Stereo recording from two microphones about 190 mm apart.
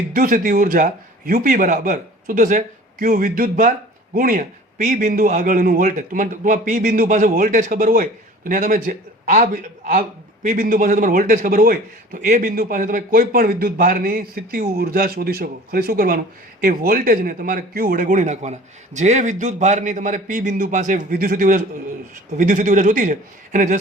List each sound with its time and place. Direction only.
0.1 s a man's voice: 45° right (ahead or behind)